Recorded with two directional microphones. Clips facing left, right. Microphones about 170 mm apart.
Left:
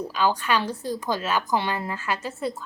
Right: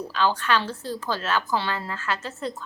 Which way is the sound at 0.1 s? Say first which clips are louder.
Right 1 dB; 10° left (ahead or behind).